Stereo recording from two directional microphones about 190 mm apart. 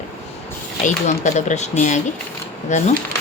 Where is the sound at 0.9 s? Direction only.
40° left (ahead or behind).